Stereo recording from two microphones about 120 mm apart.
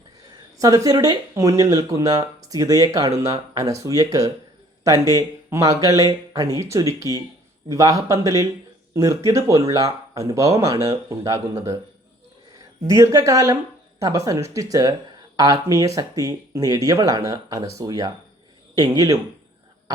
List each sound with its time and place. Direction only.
0.3 s speech: 30° right (ahead or behind)
12.8 s speech: 30° right (ahead or behind)